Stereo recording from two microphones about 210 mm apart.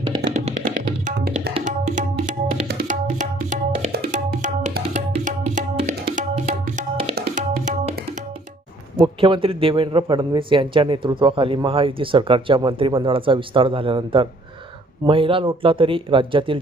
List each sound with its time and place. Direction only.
0.3 s music: 30° right (ahead or behind)
1.0 s tabla: 40° right (ahead or behind)
7.2 s music: 40° right (ahead or behind)
9.0 s a man's voice: 25° right (ahead or behind)